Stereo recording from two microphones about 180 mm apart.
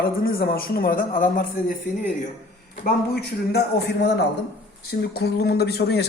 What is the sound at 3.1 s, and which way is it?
A man's voice, 60° left (ahead or behind).